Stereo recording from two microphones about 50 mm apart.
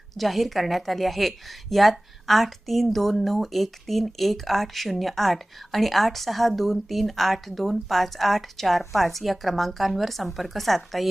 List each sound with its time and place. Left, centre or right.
0.1 s a woman's voice: centre